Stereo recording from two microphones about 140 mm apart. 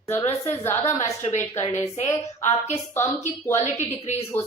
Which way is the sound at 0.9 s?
55° left (ahead or behind).